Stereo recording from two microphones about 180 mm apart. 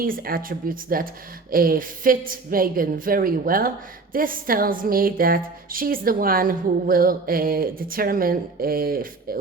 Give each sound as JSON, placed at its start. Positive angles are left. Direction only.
{"t": 0.0, "sound": "speech", "side_deg": -55}